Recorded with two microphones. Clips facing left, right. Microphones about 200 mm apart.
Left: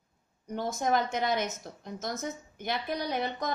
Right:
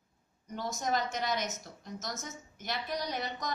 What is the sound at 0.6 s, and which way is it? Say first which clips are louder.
A woman's voice: left 5 dB; 55° left (ahead or behind).